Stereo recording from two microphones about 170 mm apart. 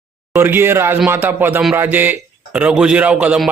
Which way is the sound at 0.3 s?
15° right (ahead or behind).